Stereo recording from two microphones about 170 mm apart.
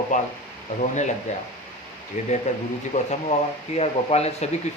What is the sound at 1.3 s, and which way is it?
Speech, 45° left (ahead or behind).